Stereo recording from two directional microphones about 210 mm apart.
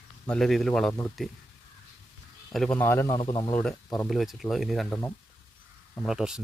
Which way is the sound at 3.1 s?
25° left (ahead or behind).